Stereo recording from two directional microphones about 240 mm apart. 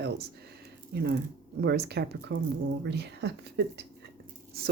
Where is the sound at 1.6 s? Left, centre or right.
Right.